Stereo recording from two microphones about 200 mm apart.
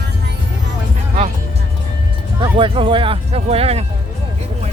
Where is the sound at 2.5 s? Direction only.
25° right (ahead or behind).